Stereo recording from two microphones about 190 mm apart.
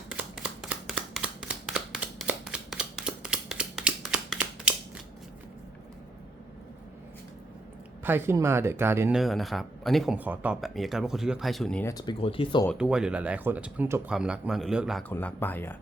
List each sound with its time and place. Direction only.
0.1 s a sound: 5° right (ahead or behind)
8.0 s speech: 10° right (ahead or behind)
9.1 s speech: centre (ahead or behind)
11.9 s speech: 20° left (ahead or behind)
12.7 s speech: 5° right (ahead or behind)
15.1 s speech: 10° left (ahead or behind)